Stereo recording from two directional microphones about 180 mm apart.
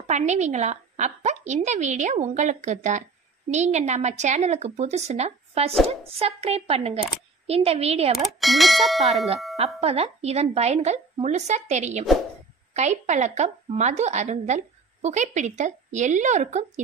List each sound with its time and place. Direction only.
0.0 s a woman's voice: 40° right (ahead or behind)
8.4 s speech: centre (ahead or behind)
9.8 s a woman's voice: 35° right (ahead or behind)